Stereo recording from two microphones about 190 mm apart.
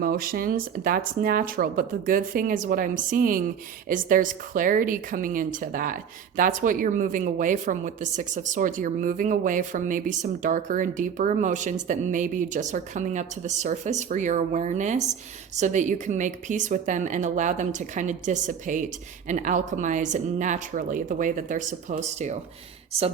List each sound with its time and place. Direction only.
0.0 s speech: 50° right (ahead or behind); by 23.1 s 30° right (ahead or behind)